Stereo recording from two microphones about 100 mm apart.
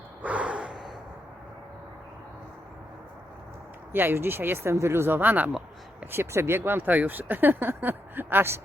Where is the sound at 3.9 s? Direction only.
20° right (ahead or behind).